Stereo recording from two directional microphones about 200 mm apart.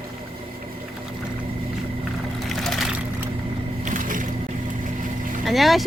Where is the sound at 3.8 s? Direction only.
40° right (ahead or behind).